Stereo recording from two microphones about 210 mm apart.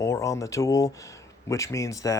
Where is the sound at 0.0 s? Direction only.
15° left (ahead or behind).